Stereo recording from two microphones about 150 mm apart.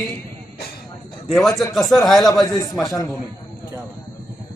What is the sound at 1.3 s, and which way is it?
Speech, centre (ahead or behind).